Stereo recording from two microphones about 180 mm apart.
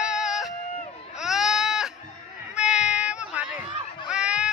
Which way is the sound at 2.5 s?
5° right (ahead or behind).